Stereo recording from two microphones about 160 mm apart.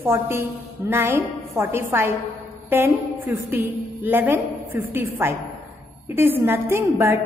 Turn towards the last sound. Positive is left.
turn(degrees=-15)  # may be behind; listen again after turning